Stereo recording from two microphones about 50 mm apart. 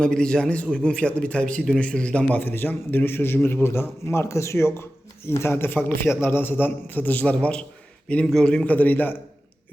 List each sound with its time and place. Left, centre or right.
0.0 s a man's voice: centre
2.4 s a man's voice: left
8.7 s a man's voice: left